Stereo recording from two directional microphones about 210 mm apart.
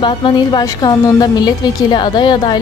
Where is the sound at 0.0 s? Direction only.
20° left (ahead or behind).